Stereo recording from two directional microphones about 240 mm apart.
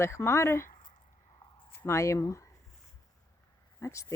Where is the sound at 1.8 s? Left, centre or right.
Centre.